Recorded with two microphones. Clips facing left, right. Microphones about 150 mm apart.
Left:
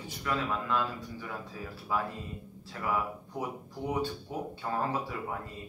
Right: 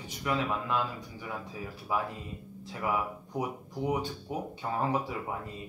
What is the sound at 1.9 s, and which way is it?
Speech, 15° right (ahead or behind).